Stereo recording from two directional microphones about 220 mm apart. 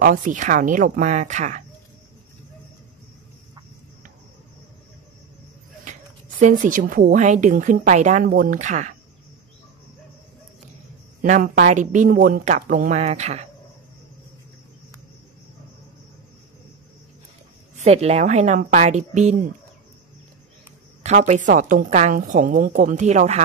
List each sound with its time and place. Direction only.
0.0 s speech: 35° right (ahead or behind)
5.9 s speech: 35° right (ahead or behind)
11.1 s speech: 35° right (ahead or behind)
17.7 s speech: 30° right (ahead or behind)
21.0 s speech: 30° right (ahead or behind)